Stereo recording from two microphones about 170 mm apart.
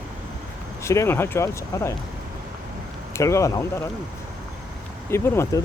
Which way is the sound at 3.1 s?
15° left (ahead or behind).